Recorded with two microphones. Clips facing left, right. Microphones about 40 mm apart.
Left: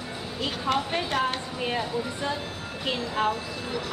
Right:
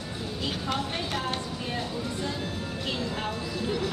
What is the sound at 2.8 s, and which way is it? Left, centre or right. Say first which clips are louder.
Speech: left 6 dB; centre.